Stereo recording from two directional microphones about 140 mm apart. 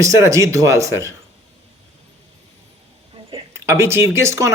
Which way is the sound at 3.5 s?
20° right (ahead or behind).